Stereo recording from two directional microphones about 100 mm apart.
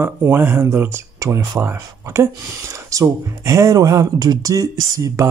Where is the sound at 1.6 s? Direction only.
25° right (ahead or behind).